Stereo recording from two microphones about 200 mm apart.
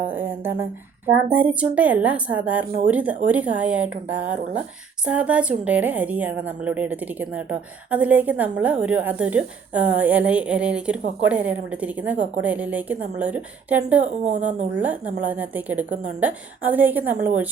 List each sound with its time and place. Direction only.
0.1 s a woman's voice: 10° right (ahead or behind)
5.0 s a woman's voice: 5° right (ahead or behind)
12.1 s a woman's voice: 35° right (ahead or behind)
12.4 s a woman's voice: 5° right (ahead or behind)
14.0 s a woman's voice: 35° right (ahead or behind)
14.8 s a woman's voice: 10° right (ahead or behind)